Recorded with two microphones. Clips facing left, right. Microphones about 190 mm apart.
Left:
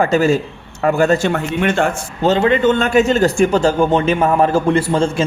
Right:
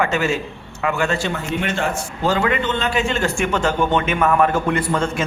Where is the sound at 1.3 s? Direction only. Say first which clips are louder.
Left 6 dB; 50° left (ahead or behind).